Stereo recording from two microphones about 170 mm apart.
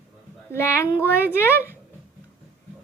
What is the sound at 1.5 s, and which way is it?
Speech, 10° right (ahead or behind).